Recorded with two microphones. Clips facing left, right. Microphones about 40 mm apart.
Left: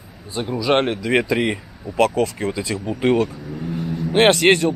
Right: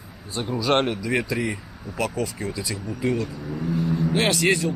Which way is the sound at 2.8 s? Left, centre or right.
Left.